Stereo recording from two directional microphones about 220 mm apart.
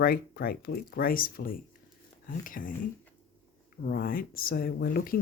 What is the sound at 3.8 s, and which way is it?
Speech, 45° left (ahead or behind).